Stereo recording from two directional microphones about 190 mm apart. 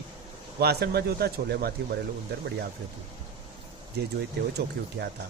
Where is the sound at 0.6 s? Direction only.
60° right (ahead or behind).